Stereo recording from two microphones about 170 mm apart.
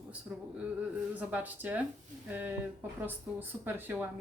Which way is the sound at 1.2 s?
10° right (ahead or behind).